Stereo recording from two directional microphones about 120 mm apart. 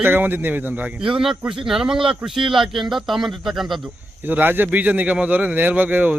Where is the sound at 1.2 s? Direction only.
5° right (ahead or behind).